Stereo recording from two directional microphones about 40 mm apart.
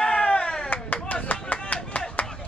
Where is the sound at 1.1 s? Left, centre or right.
Left.